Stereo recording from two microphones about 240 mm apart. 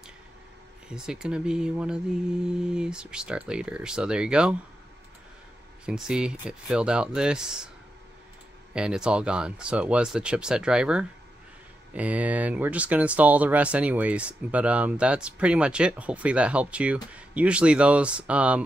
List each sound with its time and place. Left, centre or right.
0.8 s speech: centre
5.9 s speech: centre
8.7 s speech: centre